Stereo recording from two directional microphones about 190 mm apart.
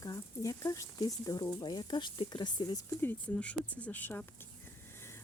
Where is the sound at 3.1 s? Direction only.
5° left (ahead or behind).